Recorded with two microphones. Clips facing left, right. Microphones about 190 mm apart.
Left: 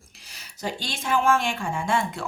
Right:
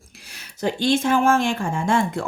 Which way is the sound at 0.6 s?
55° right (ahead or behind).